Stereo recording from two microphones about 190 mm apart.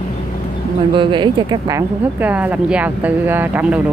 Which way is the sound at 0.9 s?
25° right (ahead or behind).